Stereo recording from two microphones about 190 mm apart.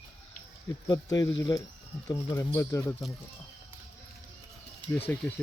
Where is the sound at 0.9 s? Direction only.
20° left (ahead or behind).